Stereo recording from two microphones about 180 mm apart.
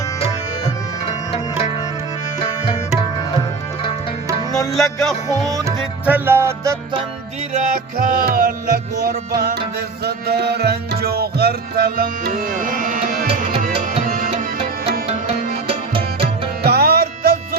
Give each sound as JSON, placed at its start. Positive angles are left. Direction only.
{"t": 1.0, "sound": "music", "side_deg": 35}
{"t": 4.7, "sound": "music", "side_deg": 0}
{"t": 5.6, "sound": "music", "side_deg": -10}
{"t": 7.6, "sound": "music", "side_deg": -50}
{"t": 13.9, "sound": "tabla", "side_deg": -45}
{"t": 15.9, "sound": "music", "side_deg": -30}
{"t": 16.6, "sound": "music", "side_deg": -60}